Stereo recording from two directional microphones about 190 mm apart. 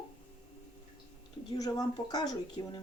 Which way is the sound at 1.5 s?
20° left (ahead or behind).